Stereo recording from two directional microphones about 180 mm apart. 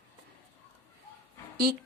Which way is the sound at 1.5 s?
55° right (ahead or behind).